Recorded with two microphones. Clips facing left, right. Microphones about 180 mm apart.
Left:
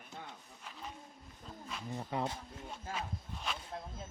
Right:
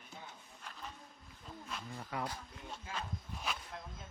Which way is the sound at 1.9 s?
25° left (ahead or behind).